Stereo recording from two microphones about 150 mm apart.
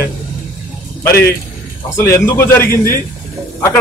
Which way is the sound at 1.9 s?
15° left (ahead or behind).